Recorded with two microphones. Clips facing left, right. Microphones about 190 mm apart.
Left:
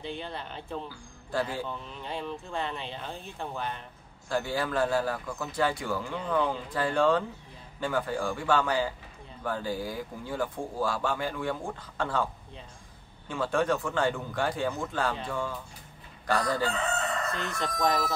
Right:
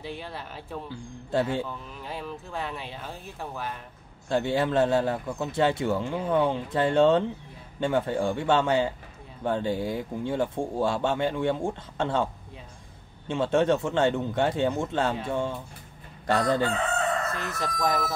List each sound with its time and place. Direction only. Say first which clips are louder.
0.0 s speech: even; 5° right (ahead or behind)
0.8 s a man's voice: right 6 dB; 25° right (ahead or behind)
1.7 s speech: even; 5° right (ahead or behind)
4.3 s a man's voice: right 5 dB; 25° right (ahead or behind)
13.3 s a man's voice: right 5 dB; 25° right (ahead or behind)
16.6 s crowing: right 3 dB; 55° right (ahead or behind)